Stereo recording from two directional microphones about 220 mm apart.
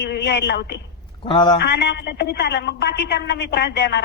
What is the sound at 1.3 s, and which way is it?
Speech, 20° left (ahead or behind).